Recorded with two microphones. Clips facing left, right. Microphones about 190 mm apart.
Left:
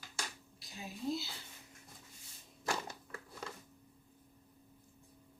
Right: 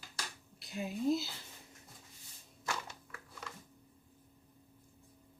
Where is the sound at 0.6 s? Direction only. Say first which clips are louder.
Right 7 dB; 60° right (ahead or behind).